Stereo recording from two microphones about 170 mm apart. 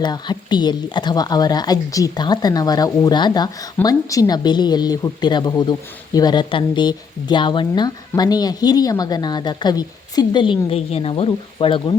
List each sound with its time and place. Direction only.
0.0 s speech: 25° left (ahead or behind)